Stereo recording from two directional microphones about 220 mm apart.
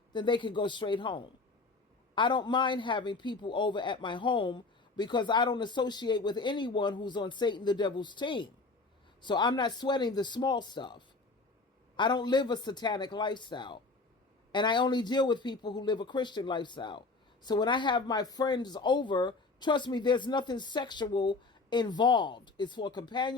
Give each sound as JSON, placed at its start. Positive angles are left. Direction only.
{"t": 0.1, "sound": "a man's voice", "side_deg": 20}